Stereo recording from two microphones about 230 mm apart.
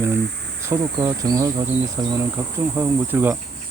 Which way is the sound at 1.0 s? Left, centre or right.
Centre.